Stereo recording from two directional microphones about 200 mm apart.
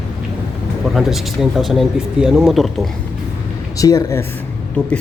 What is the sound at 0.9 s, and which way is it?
Speech, centre (ahead or behind).